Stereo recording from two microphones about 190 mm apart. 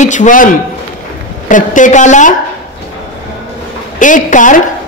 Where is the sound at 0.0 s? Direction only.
40° left (ahead or behind).